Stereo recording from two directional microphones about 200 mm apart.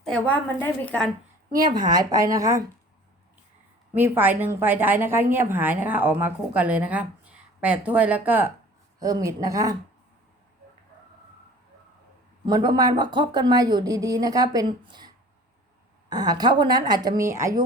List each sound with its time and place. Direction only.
0.0 s a woman's voice: 5° left (ahead or behind)
1.5 s a woman's voice: 20° right (ahead or behind)
3.9 s a woman's voice: 10° right (ahead or behind)
12.5 s a woman's voice: 20° right (ahead or behind)